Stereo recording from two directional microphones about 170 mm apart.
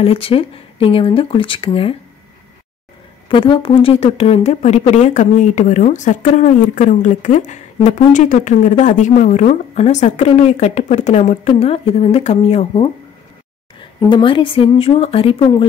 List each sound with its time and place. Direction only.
0.0 s speech: 35° left (ahead or behind)
3.3 s speech: 30° left (ahead or behind)